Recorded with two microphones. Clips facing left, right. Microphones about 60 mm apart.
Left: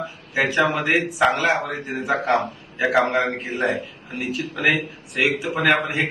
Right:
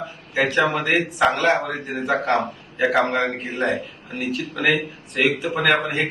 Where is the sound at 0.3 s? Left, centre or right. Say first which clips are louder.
Even; centre.